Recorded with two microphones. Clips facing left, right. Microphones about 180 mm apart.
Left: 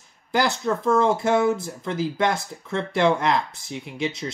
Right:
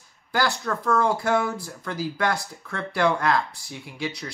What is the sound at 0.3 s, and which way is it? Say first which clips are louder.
Speech: left 3 dB; 20° left (ahead or behind).